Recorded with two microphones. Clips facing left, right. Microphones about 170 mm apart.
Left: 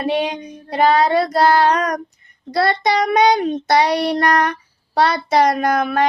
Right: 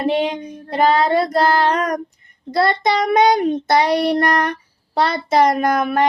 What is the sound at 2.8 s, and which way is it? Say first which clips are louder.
Child singing: even; 50° right (ahead or behind).